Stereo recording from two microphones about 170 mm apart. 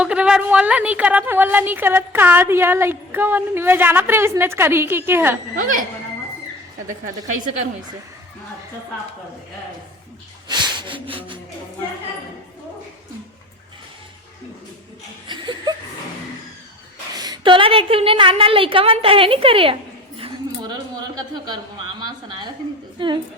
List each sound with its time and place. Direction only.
0.0 s a woman's voice: 5° right (ahead or behind)
6.8 s a woman's voice: 50° right (ahead or behind)
10.5 s speech: 25° right (ahead or behind)
15.3 s chuckle: 25° right (ahead or behind)
17.2 s a woman's voice: 25° right (ahead or behind)
23.0 s a woman's voice: 30° right (ahead or behind)